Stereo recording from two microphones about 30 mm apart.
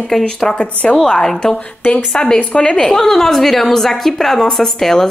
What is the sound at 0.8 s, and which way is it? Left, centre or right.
Speech, left.